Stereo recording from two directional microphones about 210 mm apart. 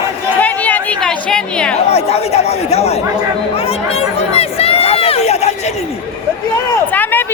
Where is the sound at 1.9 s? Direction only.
30° left (ahead or behind).